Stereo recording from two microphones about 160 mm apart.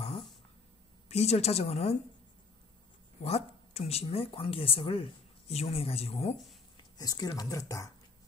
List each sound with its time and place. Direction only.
0.0 s throat clearing: 35° left (ahead or behind)
1.0 s speech: 40° left (ahead or behind)
3.2 s speech: 40° left (ahead or behind)
7.0 s speech: 25° left (ahead or behind)